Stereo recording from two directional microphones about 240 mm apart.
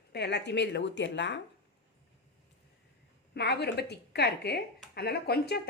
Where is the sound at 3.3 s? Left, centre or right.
Left.